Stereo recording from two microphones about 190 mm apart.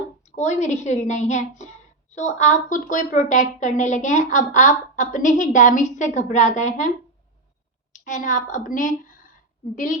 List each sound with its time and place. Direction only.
0.3 s a woman's voice: 40° left (ahead or behind)
7.9 s a woman's voice: 40° left (ahead or behind)